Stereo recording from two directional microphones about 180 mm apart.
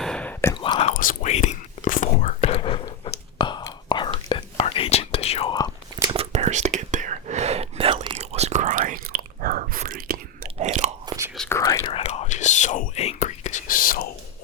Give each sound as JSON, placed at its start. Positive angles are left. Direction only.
{"t": 0.0, "sound": "whispering", "side_deg": 5}
{"t": 0.5, "sound": "whispering", "side_deg": 25}
{"t": 0.9, "sound": "whispering", "side_deg": 45}
{"t": 6.0, "sound": "whispering", "side_deg": -30}
{"t": 10.7, "sound": "biting", "side_deg": -40}
{"t": 11.3, "sound": "whispering", "side_deg": 15}
{"t": 11.9, "sound": "whispering", "side_deg": 35}